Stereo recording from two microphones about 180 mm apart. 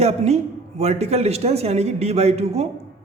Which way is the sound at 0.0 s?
35° right (ahead or behind).